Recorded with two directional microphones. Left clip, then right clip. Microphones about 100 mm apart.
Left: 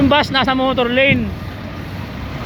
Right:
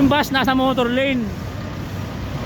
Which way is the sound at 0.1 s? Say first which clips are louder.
Left 3 dB; 30° right (ahead or behind).